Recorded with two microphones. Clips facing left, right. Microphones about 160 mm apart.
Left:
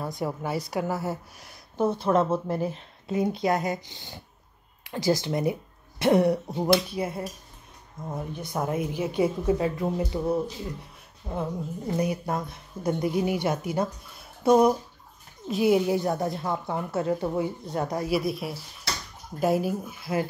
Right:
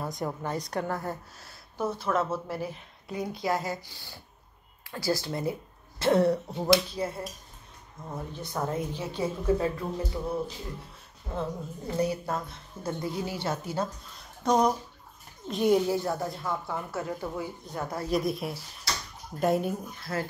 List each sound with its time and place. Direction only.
0.0 s a woman's voice: 5° left (ahead or behind)
11.3 s a woman's voice: 15° left (ahead or behind)
15.9 s a woman's voice: 20° left (ahead or behind)